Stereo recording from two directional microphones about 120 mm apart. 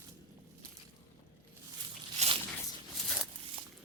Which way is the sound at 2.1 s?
55° right (ahead or behind).